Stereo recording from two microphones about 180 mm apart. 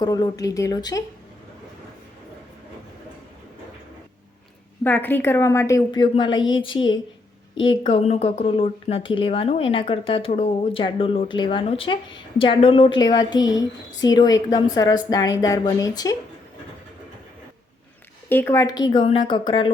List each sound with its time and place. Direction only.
0.0 s speech: 20° left (ahead or behind)
4.8 s speech: 10° left (ahead or behind)
18.3 s speech: 15° left (ahead or behind)